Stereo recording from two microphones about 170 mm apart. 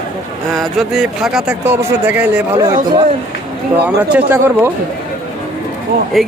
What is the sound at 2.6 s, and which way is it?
Speech, 25° right (ahead or behind).